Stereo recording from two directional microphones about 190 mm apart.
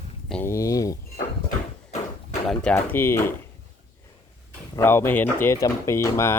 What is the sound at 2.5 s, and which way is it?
Speech, 5° left (ahead or behind).